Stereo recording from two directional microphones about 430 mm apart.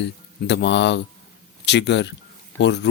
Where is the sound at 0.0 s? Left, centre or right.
Left.